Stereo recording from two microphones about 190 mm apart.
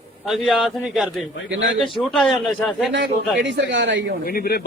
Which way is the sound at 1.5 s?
75° right (ahead or behind).